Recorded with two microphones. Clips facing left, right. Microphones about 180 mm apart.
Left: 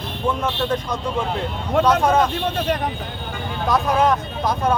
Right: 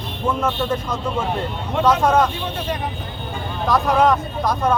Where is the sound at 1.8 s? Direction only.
Centre (ahead or behind).